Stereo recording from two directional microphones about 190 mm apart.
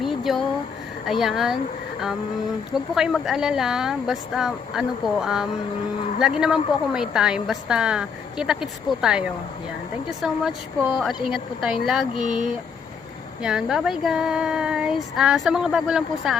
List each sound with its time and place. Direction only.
0.0 s a sound: centre (ahead or behind)
1.0 s a woman's voice: centre (ahead or behind)
2.9 s a woman's voice: centre (ahead or behind)
13.4 s a woman's voice: 5° right (ahead or behind)